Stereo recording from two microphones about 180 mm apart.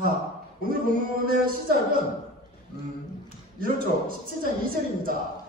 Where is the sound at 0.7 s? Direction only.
50° right (ahead or behind).